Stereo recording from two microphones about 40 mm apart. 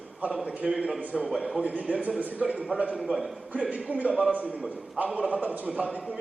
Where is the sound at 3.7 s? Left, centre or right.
Right.